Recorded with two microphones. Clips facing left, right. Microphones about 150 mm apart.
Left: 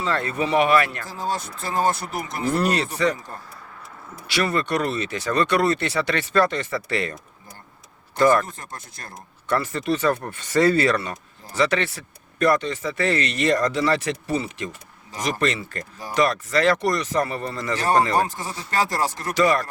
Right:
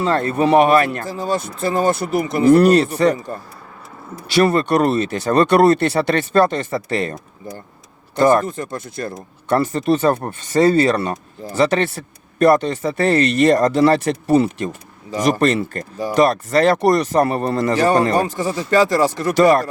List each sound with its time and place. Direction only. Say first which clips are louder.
0.0 s speech: right 7 dB; 45° right (ahead or behind)
4.4 s speech: right 6 dB; 50° right (ahead or behind)
8.2 s speech: right 4 dB; 25° right (ahead or behind)
8.4 s speech: right 12 dB; 70° right (ahead or behind)
9.5 s speech: right 6 dB; 40° right (ahead or behind)
10.3 s speech: right 4 dB; 25° right (ahead or behind)
11.5 s speech: right 5 dB; 50° right (ahead or behind)
12.4 s speech: right 7 dB; 35° right (ahead or behind)
12.7 s speech: right 7 dB; 55° right (ahead or behind)
13.6 s speech: right 7 dB; 30° right (ahead or behind)
13.8 s speech: right 8 dB; 50° right (ahead or behind)
17.7 s speech: right 3 dB; 70° right (ahead or behind)